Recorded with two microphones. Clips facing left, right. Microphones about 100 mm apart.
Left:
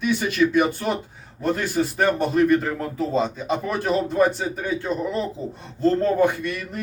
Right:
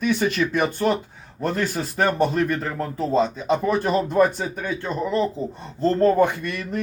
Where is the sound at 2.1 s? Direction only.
5° left (ahead or behind).